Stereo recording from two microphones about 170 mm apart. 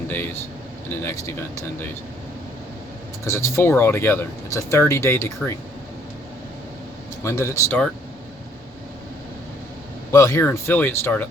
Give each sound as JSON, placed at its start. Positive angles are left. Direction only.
{"t": 0.1, "sound": "speech", "side_deg": 15}
{"t": 3.2, "sound": "speech", "side_deg": 15}
{"t": 7.3, "sound": "speech", "side_deg": 15}
{"t": 10.1, "sound": "speech", "side_deg": 15}